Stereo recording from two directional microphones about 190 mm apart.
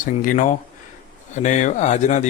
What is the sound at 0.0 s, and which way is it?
Speech, 45° left (ahead or behind).